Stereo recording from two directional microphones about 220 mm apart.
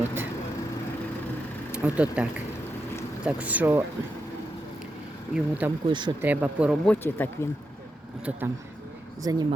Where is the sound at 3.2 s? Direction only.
5° right (ahead or behind).